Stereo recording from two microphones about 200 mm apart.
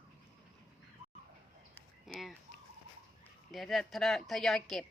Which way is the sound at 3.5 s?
Centre (ahead or behind).